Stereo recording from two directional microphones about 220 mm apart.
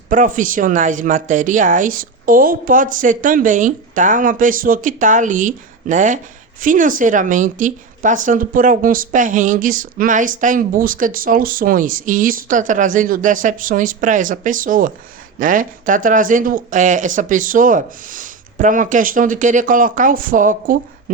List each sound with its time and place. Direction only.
0.1 s a woman's voice: 35° right (ahead or behind)